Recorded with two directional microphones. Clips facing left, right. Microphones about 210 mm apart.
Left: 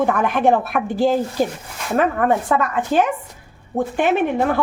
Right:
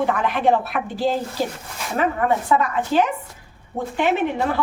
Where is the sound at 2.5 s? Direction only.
50° left (ahead or behind).